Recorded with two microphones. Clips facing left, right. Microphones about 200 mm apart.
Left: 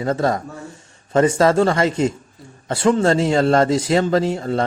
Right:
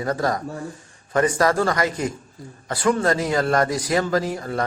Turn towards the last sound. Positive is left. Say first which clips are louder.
# left 5 dB
turn(degrees=25)  # may be behind; listen again after turning